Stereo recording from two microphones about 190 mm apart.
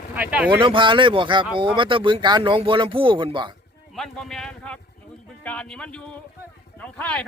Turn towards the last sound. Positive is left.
turn(degrees=5)  # may be behind; listen again after turning